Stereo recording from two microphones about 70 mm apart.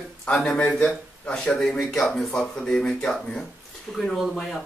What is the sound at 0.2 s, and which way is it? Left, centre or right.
Speech, centre.